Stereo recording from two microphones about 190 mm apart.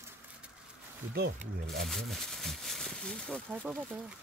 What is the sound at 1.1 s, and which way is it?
Speech, 50° right (ahead or behind).